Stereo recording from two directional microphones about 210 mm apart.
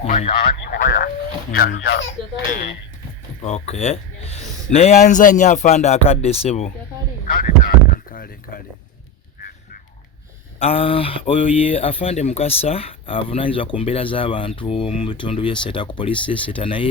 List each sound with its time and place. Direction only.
0.0 s speech: 35° left (ahead or behind); by 2.5 s 50° left (ahead or behind)
3.4 s a man's voice: 30° left (ahead or behind)
8.1 s speech: 40° left (ahead or behind)
10.6 s speech: 25° left (ahead or behind)